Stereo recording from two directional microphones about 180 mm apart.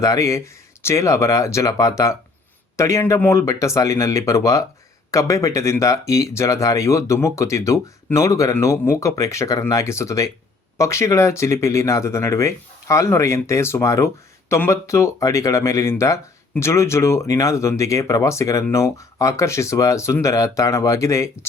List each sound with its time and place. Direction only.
0.0 s speech: 20° left (ahead or behind)